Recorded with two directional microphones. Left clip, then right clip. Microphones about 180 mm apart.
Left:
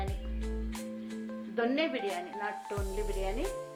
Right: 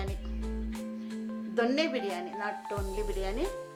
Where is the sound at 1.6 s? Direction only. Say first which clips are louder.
Right 2 dB; 25° right (ahead or behind).